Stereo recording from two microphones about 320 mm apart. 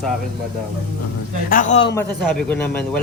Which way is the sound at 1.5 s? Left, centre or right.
Left.